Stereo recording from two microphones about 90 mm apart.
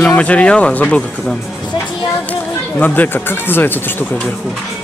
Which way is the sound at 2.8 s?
20° left (ahead or behind).